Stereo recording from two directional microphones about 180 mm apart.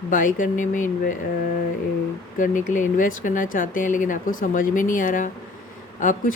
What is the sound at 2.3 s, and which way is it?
Speech, 45° left (ahead or behind).